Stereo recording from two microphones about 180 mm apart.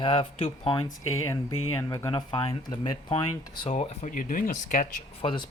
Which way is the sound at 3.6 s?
35° left (ahead or behind).